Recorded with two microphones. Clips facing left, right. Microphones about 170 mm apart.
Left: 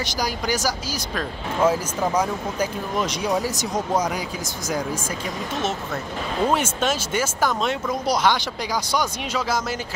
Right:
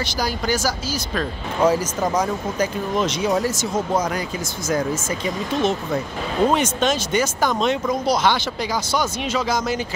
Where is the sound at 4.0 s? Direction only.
Centre (ahead or behind).